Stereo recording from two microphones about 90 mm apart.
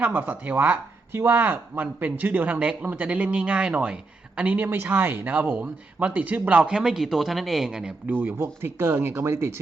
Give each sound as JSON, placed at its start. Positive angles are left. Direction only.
{"t": 0.0, "sound": "speech", "side_deg": -20}
{"t": 8.1, "sound": "speech", "side_deg": -25}